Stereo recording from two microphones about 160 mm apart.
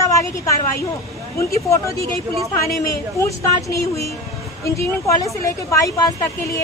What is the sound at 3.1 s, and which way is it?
A woman's voice, 20° left (ahead or behind).